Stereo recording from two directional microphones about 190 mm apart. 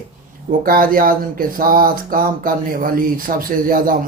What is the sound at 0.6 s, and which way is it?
Speech, 50° right (ahead or behind).